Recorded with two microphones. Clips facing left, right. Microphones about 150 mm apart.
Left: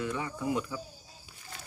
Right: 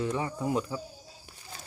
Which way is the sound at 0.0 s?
30° right (ahead or behind).